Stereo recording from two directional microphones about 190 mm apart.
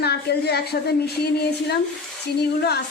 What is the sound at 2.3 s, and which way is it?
Speech, 60° left (ahead or behind).